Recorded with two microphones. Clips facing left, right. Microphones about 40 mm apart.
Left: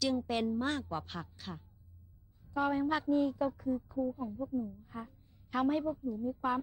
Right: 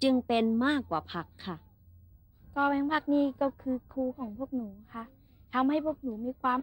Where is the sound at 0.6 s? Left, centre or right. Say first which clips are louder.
Right 7 dB; right.